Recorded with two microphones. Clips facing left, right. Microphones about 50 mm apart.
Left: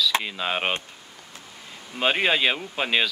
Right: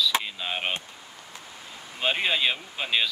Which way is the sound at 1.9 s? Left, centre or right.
Left.